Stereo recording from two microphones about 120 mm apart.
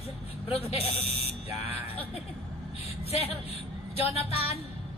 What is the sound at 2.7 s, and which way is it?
Speech, 60° left (ahead or behind).